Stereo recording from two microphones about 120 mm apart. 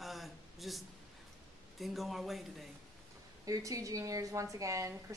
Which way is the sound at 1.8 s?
Centre (ahead or behind).